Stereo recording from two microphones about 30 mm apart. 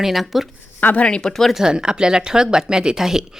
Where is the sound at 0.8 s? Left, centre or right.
Left.